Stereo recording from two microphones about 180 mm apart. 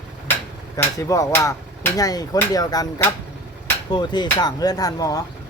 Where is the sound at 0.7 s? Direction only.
15° left (ahead or behind).